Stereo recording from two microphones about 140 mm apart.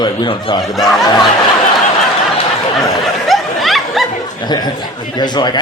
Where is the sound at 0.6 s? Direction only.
Centre (ahead or behind).